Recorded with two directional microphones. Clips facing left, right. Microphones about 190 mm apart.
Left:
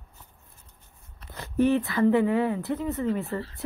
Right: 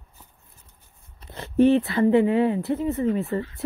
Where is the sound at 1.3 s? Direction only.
20° right (ahead or behind).